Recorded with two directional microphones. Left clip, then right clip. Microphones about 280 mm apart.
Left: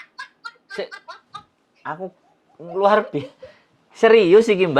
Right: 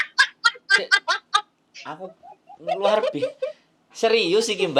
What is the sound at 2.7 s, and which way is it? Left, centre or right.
A woman's voice, left.